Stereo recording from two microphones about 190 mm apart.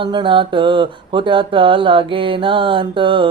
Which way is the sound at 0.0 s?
25° right (ahead or behind).